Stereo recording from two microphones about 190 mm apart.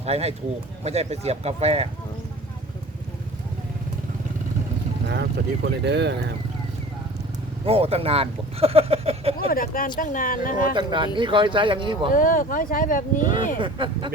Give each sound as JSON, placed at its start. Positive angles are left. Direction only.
{"t": 0.0, "sound": "speech", "side_deg": -35}
{"t": 5.0, "sound": "speech", "side_deg": -60}
{"t": 7.6, "sound": "speech", "side_deg": -30}
{"t": 9.5, "sound": "speech", "side_deg": 50}
{"t": 10.8, "sound": "speech", "side_deg": -25}
{"t": 12.1, "sound": "speech", "side_deg": 45}
{"t": 13.6, "sound": "speech", "side_deg": -25}